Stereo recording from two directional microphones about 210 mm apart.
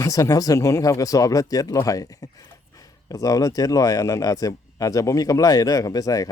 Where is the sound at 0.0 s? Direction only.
15° left (ahead or behind).